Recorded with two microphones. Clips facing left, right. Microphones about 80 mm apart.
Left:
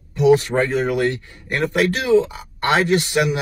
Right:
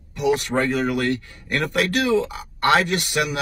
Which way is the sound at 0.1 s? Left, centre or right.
Left.